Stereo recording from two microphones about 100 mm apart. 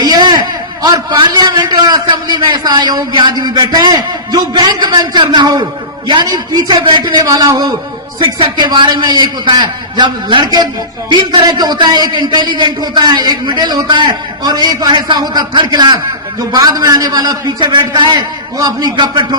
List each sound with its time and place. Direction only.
0.0 s a man's voice: 45° right (ahead or behind)
7.2 s a man's voice: 40° right (ahead or behind)